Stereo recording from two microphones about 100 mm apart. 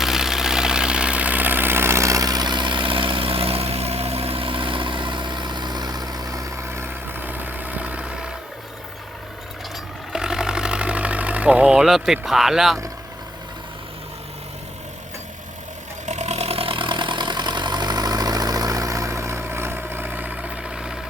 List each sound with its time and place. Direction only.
0.0 s vehicle: 5° right (ahead or behind)
10.1 s sewing machine: 5° right (ahead or behind)
16.3 s vehicle: 90° right; by 21.0 s 10° right (ahead or behind)